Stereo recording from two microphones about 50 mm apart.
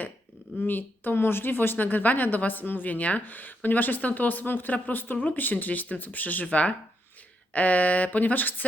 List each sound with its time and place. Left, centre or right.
0.6 s a woman's voice: left